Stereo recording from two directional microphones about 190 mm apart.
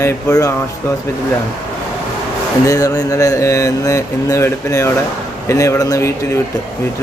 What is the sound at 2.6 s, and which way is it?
Speech, 20° left (ahead or behind).